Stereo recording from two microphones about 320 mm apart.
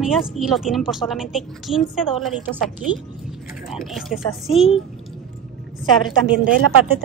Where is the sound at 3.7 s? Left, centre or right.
Centre.